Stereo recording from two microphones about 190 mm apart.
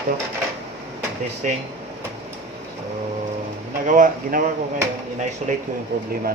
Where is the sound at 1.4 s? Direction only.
45° right (ahead or behind).